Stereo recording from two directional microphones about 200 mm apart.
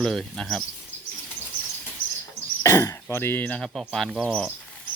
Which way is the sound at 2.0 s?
80° left.